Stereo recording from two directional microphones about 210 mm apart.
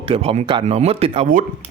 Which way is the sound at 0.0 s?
25° right (ahead or behind).